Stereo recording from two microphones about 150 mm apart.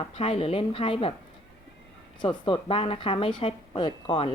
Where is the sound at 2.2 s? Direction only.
35° left (ahead or behind).